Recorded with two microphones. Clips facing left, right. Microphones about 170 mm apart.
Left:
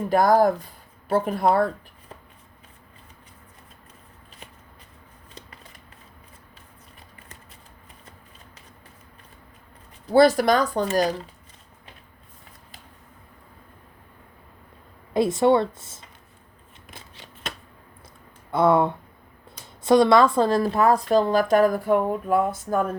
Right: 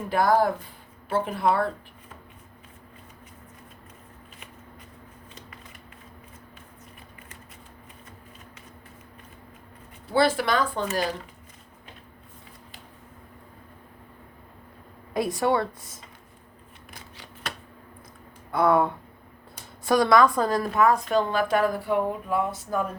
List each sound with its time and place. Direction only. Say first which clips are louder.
0.1 s a woman's voice: left 4 dB; 40° left (ahead or behind)
10.1 s a woman's voice: left 6 dB; 40° left (ahead or behind)
15.1 s speech: left 5 dB; 25° left (ahead or behind)
16.9 s scissors: left 1 dB; 20° left (ahead or behind)
18.5 s a woman's voice: left 2 dB; 25° left (ahead or behind); by 22.9 s 50° left (ahead or behind)